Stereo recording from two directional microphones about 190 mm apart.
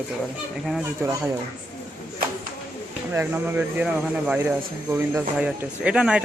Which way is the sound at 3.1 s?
10° right (ahead or behind).